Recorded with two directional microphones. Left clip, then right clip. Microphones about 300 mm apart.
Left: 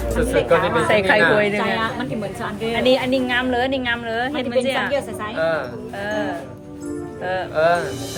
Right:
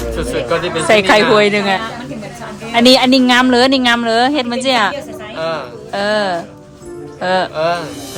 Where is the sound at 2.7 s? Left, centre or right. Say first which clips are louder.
Right 9 dB; centre.